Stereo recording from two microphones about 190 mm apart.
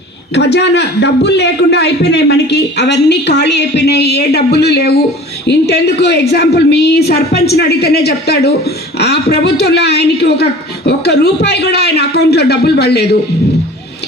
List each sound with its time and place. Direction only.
0.3 s a man's voice: 65° left (ahead or behind)